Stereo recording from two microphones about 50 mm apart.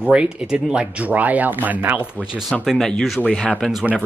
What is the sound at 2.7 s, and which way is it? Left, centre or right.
Speech, centre.